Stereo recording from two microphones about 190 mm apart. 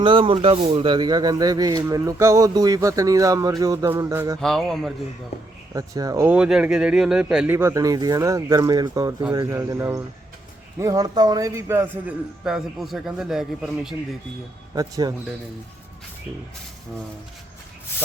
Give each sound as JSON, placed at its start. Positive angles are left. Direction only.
{"t": 0.0, "sound": "speech", "side_deg": -25}
{"t": 4.4, "sound": "speech", "side_deg": 0}
{"t": 5.7, "sound": "speech", "side_deg": -20}
{"t": 14.8, "sound": "speech", "side_deg": -20}